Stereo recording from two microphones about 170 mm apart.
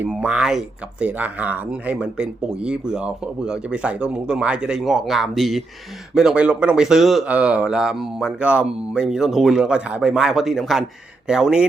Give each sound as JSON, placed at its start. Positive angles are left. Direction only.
{"t": 0.0, "sound": "speech", "side_deg": -5}